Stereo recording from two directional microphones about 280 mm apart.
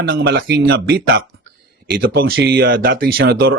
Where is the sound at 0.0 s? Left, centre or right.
Right.